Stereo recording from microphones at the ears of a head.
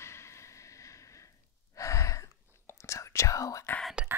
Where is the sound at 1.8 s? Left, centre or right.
Left.